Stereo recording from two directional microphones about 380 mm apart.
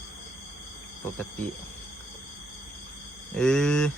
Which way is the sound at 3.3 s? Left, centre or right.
Centre.